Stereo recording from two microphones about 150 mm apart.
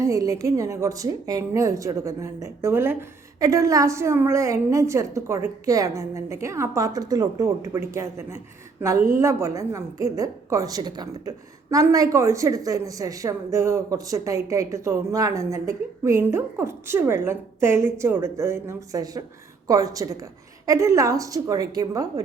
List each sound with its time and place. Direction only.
0.0 s a woman's voice: 20° right (ahead or behind)